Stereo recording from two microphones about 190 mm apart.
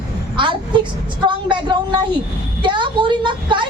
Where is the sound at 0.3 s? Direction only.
25° right (ahead or behind).